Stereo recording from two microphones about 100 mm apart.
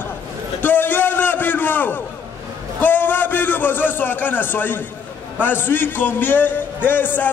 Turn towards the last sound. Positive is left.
turn(degrees=20)  # may be behind; listen again after turning